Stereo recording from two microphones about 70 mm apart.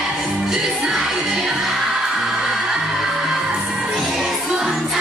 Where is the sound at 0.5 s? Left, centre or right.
Centre.